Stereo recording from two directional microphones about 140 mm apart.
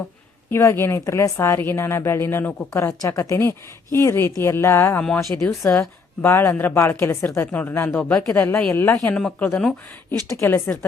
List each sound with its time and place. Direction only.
0.5 s a woman's voice: 20° left (ahead or behind)
10.3 s a woman's voice: 20° left (ahead or behind)